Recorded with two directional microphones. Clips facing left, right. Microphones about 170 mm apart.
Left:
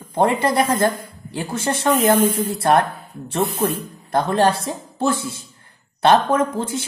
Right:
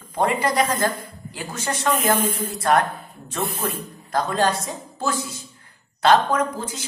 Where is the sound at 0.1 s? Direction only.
25° left (ahead or behind).